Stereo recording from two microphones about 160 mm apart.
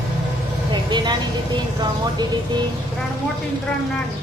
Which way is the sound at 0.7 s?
30° right (ahead or behind).